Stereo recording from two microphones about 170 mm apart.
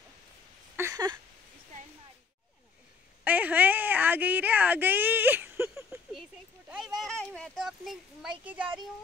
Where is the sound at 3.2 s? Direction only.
10° right (ahead or behind).